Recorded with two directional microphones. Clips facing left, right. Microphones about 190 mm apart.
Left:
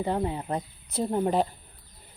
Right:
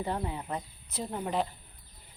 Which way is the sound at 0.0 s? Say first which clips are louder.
Left 6 dB; 30° left (ahead or behind).